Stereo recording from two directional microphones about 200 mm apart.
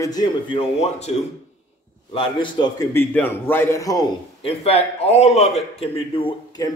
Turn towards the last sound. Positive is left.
turn(degrees=25)  # may be behind; listen again after turning